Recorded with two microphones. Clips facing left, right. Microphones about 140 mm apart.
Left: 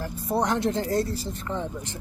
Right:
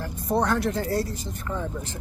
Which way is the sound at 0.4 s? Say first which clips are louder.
Even; 20° left (ahead or behind).